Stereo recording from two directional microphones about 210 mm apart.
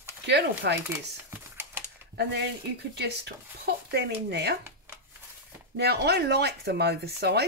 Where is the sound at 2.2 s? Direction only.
55° right (ahead or behind).